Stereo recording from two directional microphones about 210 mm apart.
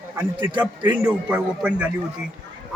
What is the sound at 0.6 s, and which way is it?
A man's voice, 10° right (ahead or behind).